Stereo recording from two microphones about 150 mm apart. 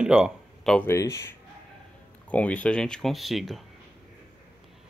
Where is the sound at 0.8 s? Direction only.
20° left (ahead or behind).